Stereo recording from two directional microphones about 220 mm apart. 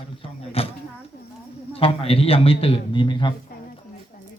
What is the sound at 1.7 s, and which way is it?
A man's voice, 25° left (ahead or behind).